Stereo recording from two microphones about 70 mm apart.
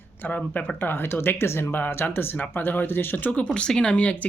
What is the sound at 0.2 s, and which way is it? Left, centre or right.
Speech, left.